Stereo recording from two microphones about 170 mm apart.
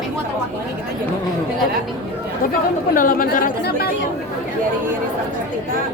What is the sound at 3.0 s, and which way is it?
Speech, 55° left (ahead or behind).